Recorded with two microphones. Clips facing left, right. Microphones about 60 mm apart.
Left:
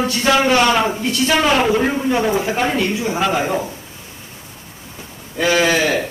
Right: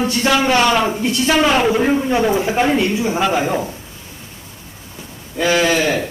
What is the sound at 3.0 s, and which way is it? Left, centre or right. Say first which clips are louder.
Speech: right 1 dB; centre.